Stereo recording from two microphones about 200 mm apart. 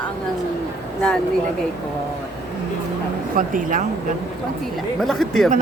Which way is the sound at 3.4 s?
40° right (ahead or behind).